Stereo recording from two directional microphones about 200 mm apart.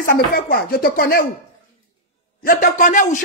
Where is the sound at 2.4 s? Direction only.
45° left (ahead or behind).